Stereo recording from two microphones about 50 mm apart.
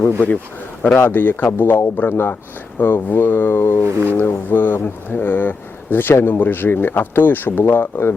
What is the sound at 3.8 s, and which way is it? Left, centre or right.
Speech, right.